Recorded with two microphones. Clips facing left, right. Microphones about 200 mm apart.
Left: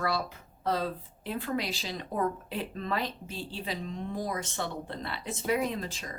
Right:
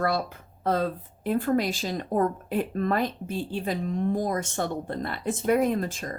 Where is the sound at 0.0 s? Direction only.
50° right (ahead or behind).